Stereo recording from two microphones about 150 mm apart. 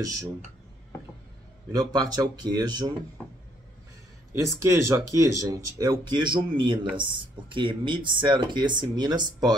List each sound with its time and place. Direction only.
1.7 s speech: 25° right (ahead or behind)
4.3 s speech: 20° right (ahead or behind)